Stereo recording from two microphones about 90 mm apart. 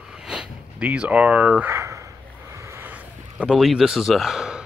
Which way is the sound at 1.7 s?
35° right (ahead or behind).